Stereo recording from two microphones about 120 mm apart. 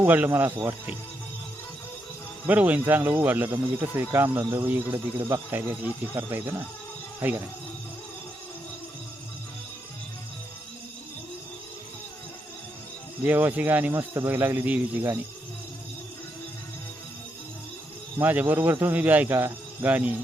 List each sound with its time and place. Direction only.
0.0 s speech: 15° right (ahead or behind)
2.5 s speech: 15° right (ahead or behind)
7.2 s speech: 15° right (ahead or behind)
13.2 s speech: 15° right (ahead or behind)
18.2 s speech: 15° right (ahead or behind)